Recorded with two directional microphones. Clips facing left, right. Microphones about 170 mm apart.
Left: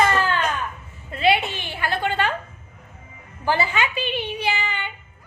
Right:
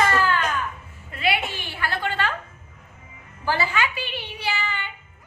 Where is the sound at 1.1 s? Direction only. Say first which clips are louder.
Left 5 dB; 25° left (ahead or behind).